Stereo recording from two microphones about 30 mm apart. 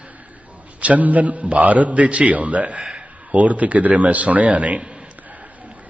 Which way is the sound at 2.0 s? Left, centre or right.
Right.